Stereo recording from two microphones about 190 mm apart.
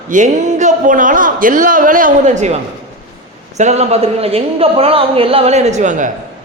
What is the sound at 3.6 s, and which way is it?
Speech, 35° right (ahead or behind).